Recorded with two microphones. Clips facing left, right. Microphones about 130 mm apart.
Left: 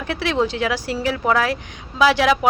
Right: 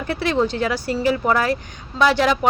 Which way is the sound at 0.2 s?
Centre (ahead or behind).